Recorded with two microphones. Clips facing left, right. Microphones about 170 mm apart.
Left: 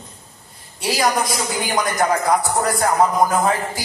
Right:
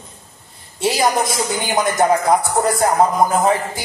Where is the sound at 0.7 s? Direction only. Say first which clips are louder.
Right 2 dB; 25° right (ahead or behind).